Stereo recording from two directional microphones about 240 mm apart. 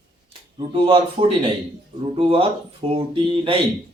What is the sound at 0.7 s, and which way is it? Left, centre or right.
Speech, right.